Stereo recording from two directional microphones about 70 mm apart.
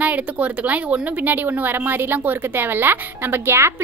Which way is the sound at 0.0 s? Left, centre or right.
Right.